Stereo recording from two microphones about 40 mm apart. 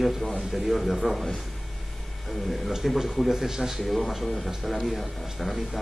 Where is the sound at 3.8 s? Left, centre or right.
Centre.